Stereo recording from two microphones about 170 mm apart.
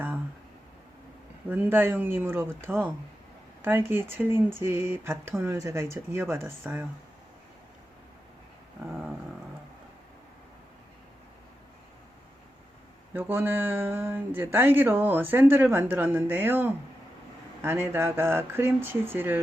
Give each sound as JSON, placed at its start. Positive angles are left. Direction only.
{"t": 1.5, "sound": "speech", "side_deg": -10}
{"t": 8.9, "sound": "dog", "side_deg": 0}
{"t": 13.1, "sound": "speech", "side_deg": -10}